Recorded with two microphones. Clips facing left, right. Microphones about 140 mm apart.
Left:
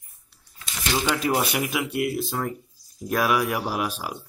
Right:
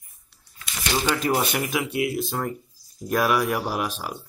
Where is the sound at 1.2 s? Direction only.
Centre (ahead or behind).